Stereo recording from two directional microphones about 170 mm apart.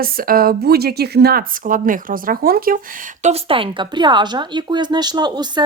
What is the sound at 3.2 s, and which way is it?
Speech, 35° right (ahead or behind).